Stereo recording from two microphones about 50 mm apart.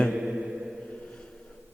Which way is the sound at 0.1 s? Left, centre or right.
Centre.